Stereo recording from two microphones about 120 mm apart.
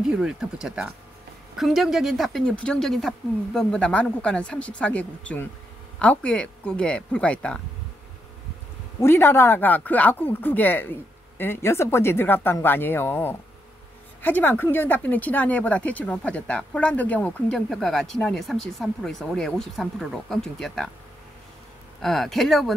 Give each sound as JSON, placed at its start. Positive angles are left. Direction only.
{"t": 0.1, "sound": "speech", "side_deg": -5}
{"t": 9.0, "sound": "speech", "side_deg": 20}
{"t": 22.0, "sound": "speech", "side_deg": 0}